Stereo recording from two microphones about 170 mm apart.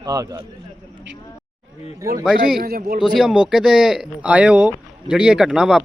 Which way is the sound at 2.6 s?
65° right (ahead or behind).